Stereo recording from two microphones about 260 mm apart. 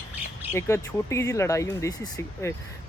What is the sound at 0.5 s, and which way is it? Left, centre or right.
Speech, centre.